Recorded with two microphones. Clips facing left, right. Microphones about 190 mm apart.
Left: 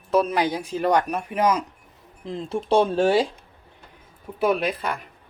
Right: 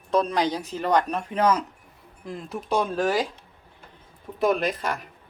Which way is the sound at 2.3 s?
25° left (ahead or behind).